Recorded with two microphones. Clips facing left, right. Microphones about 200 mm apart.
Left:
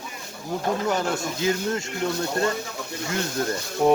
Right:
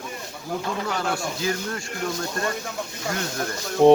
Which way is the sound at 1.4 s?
20° left (ahead or behind).